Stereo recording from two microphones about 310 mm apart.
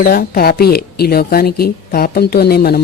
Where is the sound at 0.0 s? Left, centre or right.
Left.